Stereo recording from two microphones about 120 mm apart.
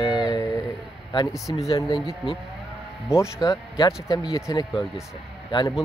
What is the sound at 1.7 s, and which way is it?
Speech, 35° left (ahead or behind).